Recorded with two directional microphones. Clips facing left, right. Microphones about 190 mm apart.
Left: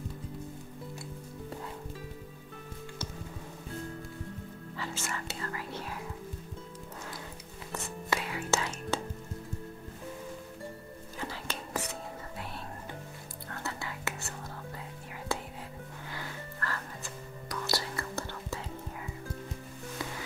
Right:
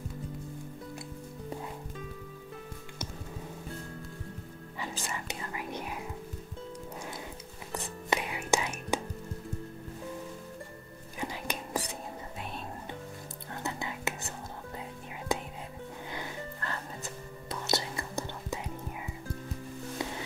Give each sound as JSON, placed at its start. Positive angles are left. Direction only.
{"t": 5.0, "sound": "whispering", "side_deg": -15}
{"t": 8.1, "sound": "whispering", "side_deg": -20}
{"t": 11.1, "sound": "whispering", "side_deg": -15}